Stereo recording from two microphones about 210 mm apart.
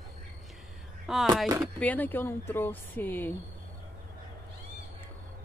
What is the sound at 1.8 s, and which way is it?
A woman's voice, 10° left (ahead or behind).